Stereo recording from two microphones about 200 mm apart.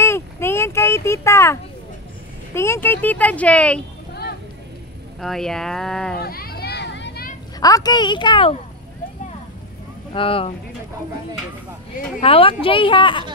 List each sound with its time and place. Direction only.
0.0 s a sound: 10° left (ahead or behind)
2.5 s speech: 15° left (ahead or behind)
4.1 s a sound: 50° left (ahead or behind)
5.2 s speech: centre (ahead or behind)
6.1 s children playing: 50° left (ahead or behind)
7.6 s a woman's voice: 20° left (ahead or behind)
10.1 s a woman's voice: 25° left (ahead or behind)
12.2 s a woman's voice: 25° left (ahead or behind)